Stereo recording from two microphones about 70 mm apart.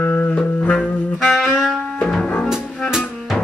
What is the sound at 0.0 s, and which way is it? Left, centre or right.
Music, left.